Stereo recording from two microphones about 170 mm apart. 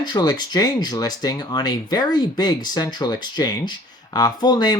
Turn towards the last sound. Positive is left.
turn(degrees=25)  # may be behind; listen again after turning